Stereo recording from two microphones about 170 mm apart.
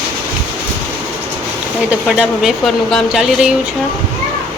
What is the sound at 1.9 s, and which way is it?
Speech, 5° right (ahead or behind).